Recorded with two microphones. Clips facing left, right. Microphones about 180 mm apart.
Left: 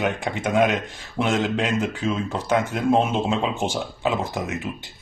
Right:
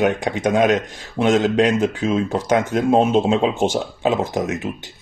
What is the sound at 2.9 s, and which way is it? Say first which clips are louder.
A man's voice: right 5 dB; 15° right (ahead or behind).